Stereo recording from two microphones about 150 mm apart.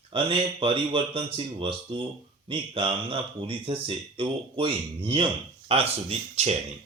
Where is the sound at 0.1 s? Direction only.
35° right (ahead or behind).